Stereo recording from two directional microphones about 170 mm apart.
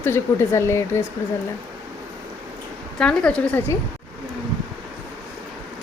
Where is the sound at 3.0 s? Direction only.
5° left (ahead or behind).